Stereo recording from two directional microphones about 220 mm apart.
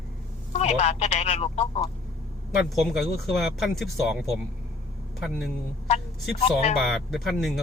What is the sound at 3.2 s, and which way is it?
Speech, centre (ahead or behind).